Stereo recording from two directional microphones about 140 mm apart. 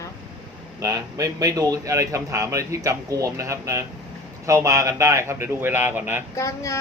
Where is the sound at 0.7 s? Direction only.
25° right (ahead or behind).